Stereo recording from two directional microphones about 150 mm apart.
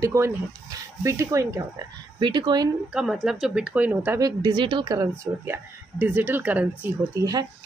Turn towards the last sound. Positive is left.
turn(degrees=-20)  # may be behind; listen again after turning